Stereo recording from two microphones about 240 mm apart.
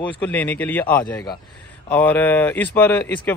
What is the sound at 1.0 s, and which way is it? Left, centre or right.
Speech, centre.